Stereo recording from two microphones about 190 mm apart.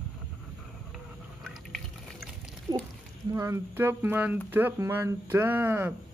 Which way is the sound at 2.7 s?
20° right (ahead or behind).